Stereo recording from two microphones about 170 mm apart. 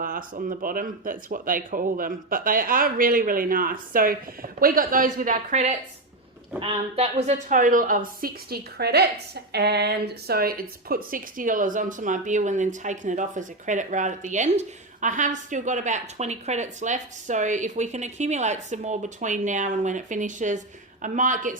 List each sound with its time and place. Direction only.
0.0 s a woman's voice: 50° right (ahead or behind)